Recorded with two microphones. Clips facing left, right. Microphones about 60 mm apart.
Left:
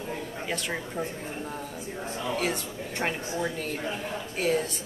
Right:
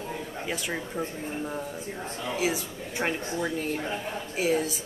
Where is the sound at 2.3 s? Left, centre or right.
Centre.